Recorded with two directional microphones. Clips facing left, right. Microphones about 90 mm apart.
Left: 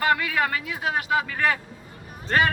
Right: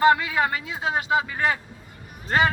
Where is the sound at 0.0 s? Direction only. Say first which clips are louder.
Right 4 dB; 25° right (ahead or behind).